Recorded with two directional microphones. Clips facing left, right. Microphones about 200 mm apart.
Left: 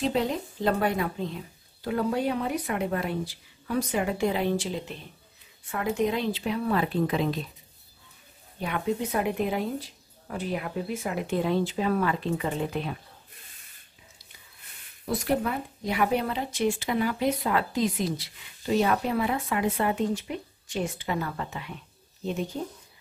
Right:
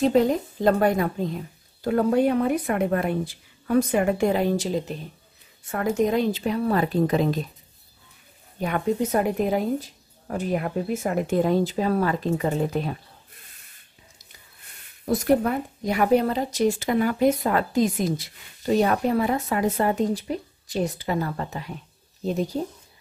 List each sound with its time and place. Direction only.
0.0 s speech: 45° right (ahead or behind)
8.5 s speech: 45° right (ahead or behind)
15.0 s speech: 45° right (ahead or behind)